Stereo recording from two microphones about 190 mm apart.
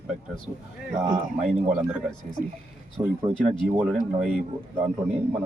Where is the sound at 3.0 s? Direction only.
25° right (ahead or behind).